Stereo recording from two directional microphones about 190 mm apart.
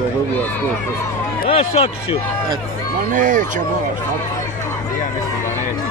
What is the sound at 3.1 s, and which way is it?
Speech, 40° right (ahead or behind).